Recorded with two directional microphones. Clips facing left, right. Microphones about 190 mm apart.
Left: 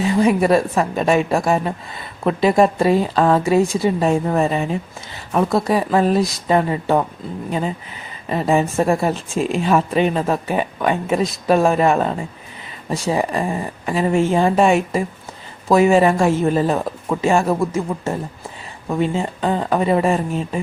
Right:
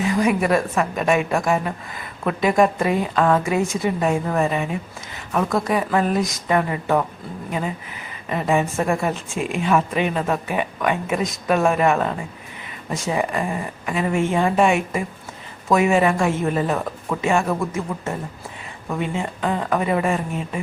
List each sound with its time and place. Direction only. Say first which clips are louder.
0.0 s a woman's voice: left 4 dB; 30° left (ahead or behind)
8.3 s a woman's voice: left 3 dB; 30° left (ahead or behind)